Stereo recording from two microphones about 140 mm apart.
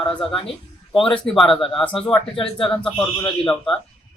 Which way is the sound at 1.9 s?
35° left (ahead or behind).